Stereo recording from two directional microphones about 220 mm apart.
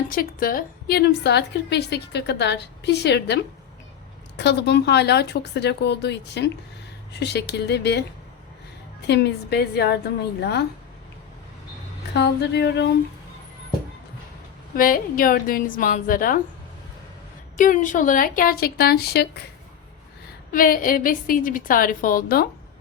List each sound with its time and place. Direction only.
0.1 s a woman's voice: 40° left (ahead or behind)
12.1 s a woman's voice: 50° left (ahead or behind)
14.8 s a woman's voice: 40° left (ahead or behind)
17.6 s a woman's voice: 35° left (ahead or behind)
20.5 s a woman's voice: 40° left (ahead or behind)